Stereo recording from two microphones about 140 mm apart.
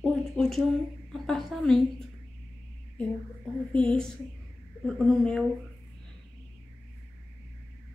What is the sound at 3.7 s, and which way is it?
A woman's voice, 10° left (ahead or behind).